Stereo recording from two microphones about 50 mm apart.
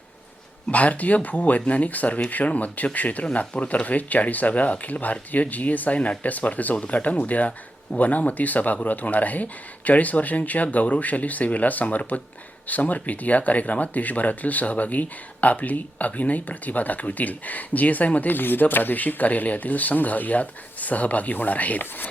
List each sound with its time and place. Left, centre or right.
0.7 s speech: left